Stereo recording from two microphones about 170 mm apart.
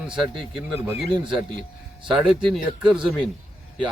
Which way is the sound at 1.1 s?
30° right (ahead or behind).